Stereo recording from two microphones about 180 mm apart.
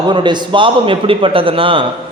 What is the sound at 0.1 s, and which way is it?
A man's voice, 25° right (ahead or behind).